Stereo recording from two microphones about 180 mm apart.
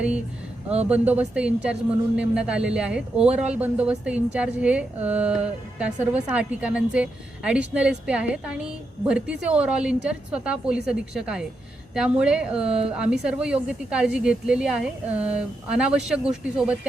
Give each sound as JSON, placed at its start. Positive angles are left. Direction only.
{"t": 0.9, "sound": "a woman's voice", "side_deg": -10}
{"t": 12.6, "sound": "speech", "side_deg": -35}
{"t": 13.0, "sound": "a woman's voice", "side_deg": -5}